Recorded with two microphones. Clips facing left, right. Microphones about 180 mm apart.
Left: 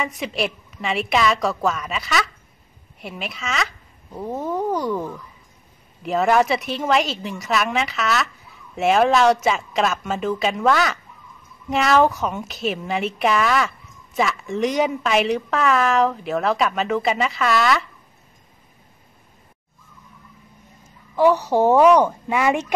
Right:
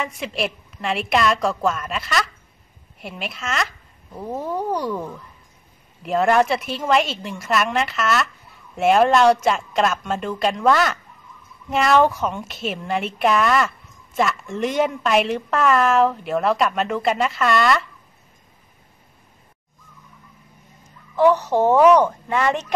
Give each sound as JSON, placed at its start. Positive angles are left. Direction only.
{"t": 0.0, "sound": "speech", "side_deg": 0}
{"t": 21.2, "sound": "speech", "side_deg": 10}